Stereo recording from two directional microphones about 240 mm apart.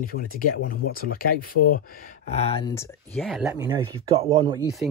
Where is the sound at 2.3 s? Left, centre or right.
Left.